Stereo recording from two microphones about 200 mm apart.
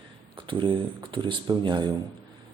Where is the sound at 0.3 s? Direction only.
25° right (ahead or behind).